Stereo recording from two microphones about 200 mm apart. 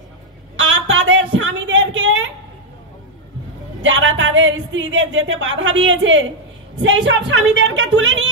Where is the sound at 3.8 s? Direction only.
70° right (ahead or behind).